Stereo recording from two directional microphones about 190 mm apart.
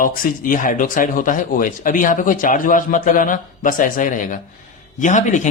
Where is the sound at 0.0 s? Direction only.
45° left (ahead or behind).